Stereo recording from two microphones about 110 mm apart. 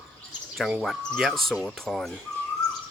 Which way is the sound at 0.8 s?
Centre (ahead or behind).